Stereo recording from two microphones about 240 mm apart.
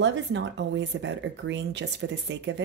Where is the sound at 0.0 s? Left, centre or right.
Right.